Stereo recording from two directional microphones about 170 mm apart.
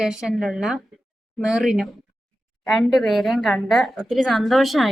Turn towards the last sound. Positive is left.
turn(degrees=0)  # may be behind; listen again after turning